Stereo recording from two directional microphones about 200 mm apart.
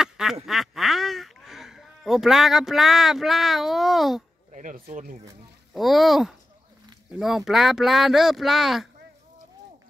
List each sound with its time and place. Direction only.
0.0 s quack: centre (ahead or behind)
0.5 s speech: centre (ahead or behind)
4.5 s speech: 40° right (ahead or behind)
5.7 s speech: centre (ahead or behind)